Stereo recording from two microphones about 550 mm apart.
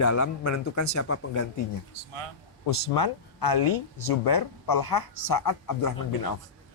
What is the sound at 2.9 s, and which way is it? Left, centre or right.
Speech, left.